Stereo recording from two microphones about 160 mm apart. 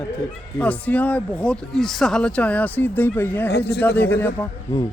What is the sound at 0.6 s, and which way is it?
Speech, 10° left (ahead or behind).